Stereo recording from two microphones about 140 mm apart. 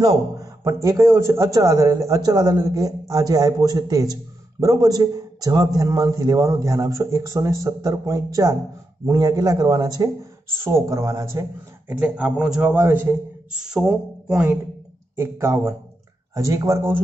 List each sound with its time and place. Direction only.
0.0 s a man's voice: 25° right (ahead or behind)
11.9 s a man's voice: 10° right (ahead or behind)
15.1 s a man's voice: 20° right (ahead or behind)